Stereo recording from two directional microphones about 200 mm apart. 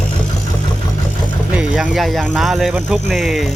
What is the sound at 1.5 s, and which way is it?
Speech, 5° right (ahead or behind).